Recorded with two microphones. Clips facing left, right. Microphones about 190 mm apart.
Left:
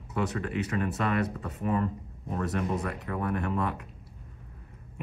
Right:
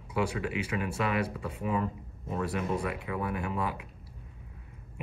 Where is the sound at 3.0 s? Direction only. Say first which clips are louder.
Left 2 dB; 50° left (ahead or behind).